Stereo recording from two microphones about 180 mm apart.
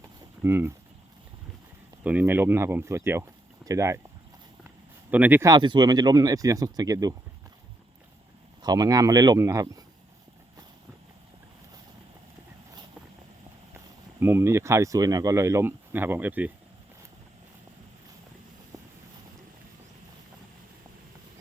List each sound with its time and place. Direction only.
0.4 s speech: 15° right (ahead or behind)
2.0 s speech: 10° right (ahead or behind)
5.1 s speech: 10° right (ahead or behind)
8.6 s speech: 20° right (ahead or behind)
13.7 s speech: 15° right (ahead or behind)